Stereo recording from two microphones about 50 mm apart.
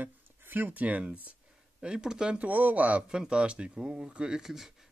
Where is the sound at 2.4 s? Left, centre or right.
Right.